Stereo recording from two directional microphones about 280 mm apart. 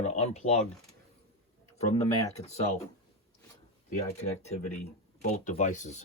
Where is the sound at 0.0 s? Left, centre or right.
Left.